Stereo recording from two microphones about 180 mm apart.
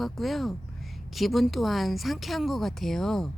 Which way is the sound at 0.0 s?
Centre (ahead or behind).